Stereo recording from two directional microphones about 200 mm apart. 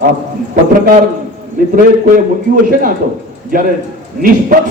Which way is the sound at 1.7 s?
45° right (ahead or behind).